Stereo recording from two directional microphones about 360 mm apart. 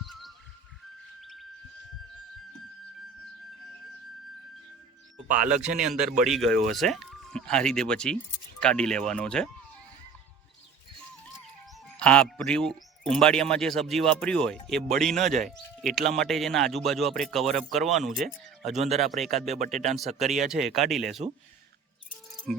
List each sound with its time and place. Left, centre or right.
0.1 s chirp: centre
1.2 s a sound: centre
5.1 s speech: centre
5.6 s speech: centre
11.9 s speech: centre
18.8 s speech: centre
19.0 s speech: centre
20.1 s speech: centre
20.5 s speech: centre
22.5 s music: centre